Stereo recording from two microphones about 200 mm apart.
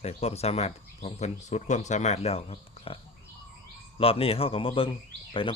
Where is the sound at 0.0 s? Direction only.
30° left (ahead or behind).